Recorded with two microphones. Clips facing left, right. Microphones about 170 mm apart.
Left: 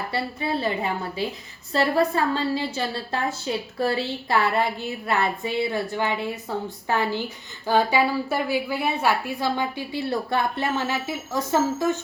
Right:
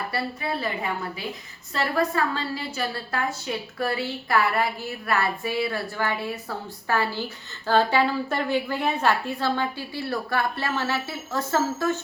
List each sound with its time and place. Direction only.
0.1 s a woman's voice: 25° left (ahead or behind)